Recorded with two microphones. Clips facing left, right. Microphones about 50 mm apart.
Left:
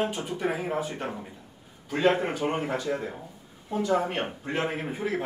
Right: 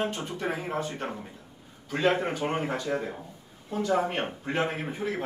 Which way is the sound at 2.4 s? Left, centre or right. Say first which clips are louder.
Left 1 dB; centre.